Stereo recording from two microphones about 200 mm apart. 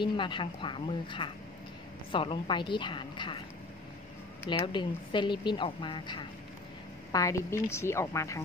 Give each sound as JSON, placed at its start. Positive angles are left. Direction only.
{"t": 0.0, "sound": "a woman's voice", "side_deg": 25}
{"t": 4.5, "sound": "a woman's voice", "side_deg": 25}